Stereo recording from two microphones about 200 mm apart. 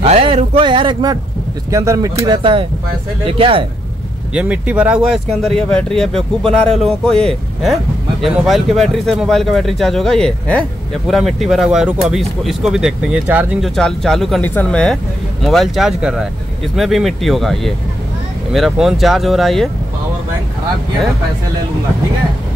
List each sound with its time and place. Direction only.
0.0 s speech: 30° right (ahead or behind)
4.3 s speech: 5° right (ahead or behind)